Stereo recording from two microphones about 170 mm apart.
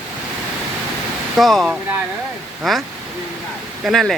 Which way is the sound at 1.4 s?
Centre (ahead or behind).